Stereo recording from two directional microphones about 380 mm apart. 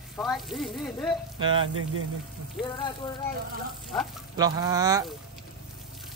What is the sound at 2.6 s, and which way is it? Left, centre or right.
Speech, centre.